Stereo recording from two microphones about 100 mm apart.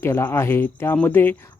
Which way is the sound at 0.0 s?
25° left (ahead or behind).